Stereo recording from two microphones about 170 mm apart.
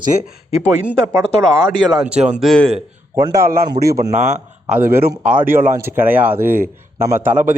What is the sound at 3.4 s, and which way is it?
Speech, 60° right (ahead or behind).